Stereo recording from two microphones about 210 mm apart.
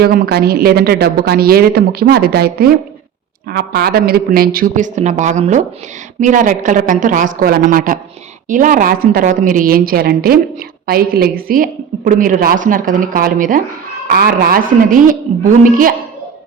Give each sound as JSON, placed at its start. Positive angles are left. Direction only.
{"t": 0.0, "sound": "a woman's voice", "side_deg": -50}